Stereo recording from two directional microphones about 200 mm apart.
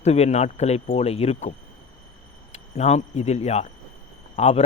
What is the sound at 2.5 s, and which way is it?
Speech, 35° left (ahead or behind).